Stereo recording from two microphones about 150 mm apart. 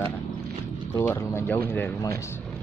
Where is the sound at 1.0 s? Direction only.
15° left (ahead or behind).